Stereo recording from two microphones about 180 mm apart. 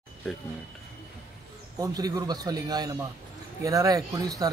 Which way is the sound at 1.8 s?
20° right (ahead or behind).